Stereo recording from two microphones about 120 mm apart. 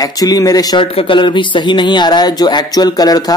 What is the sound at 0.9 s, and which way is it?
Speech, 45° left (ahead or behind).